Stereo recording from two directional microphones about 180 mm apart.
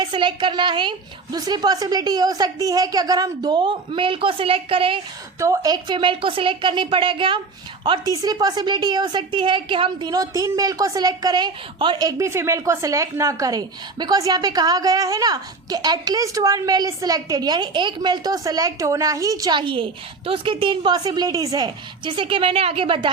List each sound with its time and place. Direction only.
0.0 s a woman's voice: 25° right (ahead or behind)
5.4 s a woman's voice: 20° right (ahead or behind)